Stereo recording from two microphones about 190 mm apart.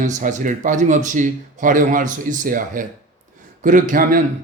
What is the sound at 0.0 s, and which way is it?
A man's voice, 40° right (ahead or behind).